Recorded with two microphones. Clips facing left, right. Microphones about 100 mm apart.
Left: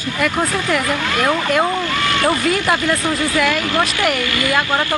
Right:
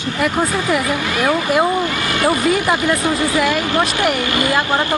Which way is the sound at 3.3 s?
25° right (ahead or behind).